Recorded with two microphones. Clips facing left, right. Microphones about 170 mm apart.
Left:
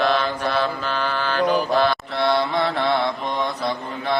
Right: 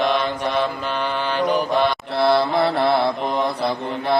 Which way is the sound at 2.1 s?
30° right (ahead or behind).